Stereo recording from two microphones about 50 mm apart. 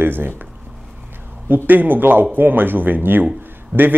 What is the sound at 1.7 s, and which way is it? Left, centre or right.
Speech, right.